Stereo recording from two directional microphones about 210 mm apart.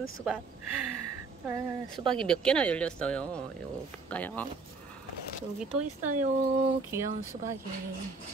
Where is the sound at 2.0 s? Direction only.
5° left (ahead or behind).